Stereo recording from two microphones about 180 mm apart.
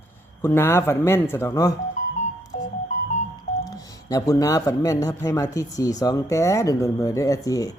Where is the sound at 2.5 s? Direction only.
40° left (ahead or behind).